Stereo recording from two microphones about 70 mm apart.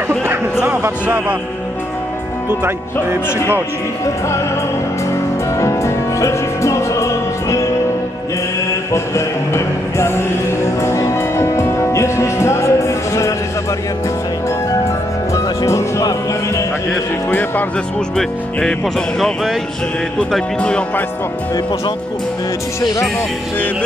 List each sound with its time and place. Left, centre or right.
5.6 s music: left
8.9 s music: left
17.3 s speech: left
18.1 s speech: centre